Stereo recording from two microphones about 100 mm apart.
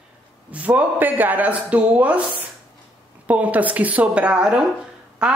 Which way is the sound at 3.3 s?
15° right (ahead or behind).